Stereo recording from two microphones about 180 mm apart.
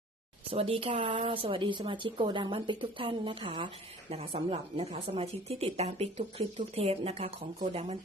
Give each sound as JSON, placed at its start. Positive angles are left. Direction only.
{"t": 0.5, "sound": "speech", "side_deg": -30}